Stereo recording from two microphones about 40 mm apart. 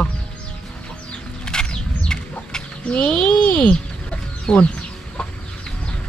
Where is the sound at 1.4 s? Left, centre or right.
Centre.